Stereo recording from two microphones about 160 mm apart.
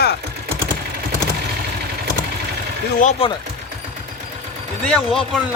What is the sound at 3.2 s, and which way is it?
Speech, 35° left (ahead or behind).